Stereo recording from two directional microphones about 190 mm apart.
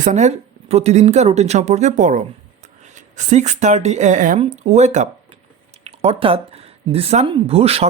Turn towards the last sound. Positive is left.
turn(degrees=-30)  # may be behind; listen again after turning